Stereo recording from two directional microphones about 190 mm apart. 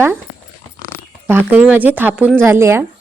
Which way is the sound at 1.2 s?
10° right (ahead or behind).